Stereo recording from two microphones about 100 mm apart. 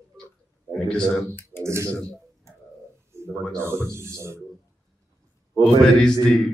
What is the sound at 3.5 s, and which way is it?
Speech, 25° right (ahead or behind).